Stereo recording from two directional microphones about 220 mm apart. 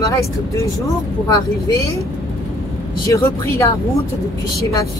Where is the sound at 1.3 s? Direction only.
15° left (ahead or behind).